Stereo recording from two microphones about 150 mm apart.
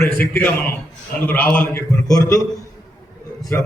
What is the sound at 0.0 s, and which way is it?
A man's voice, 15° left (ahead or behind).